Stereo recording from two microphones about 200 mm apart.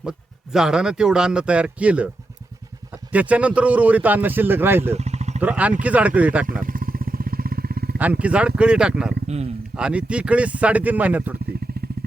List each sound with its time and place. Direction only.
0.0 s a man's voice: 5° right (ahead or behind)
4.9 s vehicle: 35° right (ahead or behind)
5.4 s a man's voice: 5° right (ahead or behind)
6.5 s vehicle: 45° right (ahead or behind)
8.2 s speech: 5° right (ahead or behind)
9.2 s speech: 30° right (ahead or behind)
9.7 s a man's voice: 5° right (ahead or behind)